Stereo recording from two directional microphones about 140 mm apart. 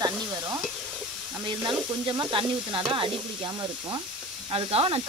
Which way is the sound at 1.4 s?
35° right (ahead or behind).